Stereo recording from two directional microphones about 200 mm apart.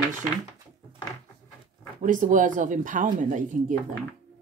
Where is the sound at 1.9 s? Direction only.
40° right (ahead or behind).